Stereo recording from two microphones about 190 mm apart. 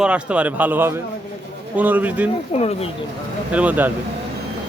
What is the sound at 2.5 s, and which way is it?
Speech, 35° left (ahead or behind).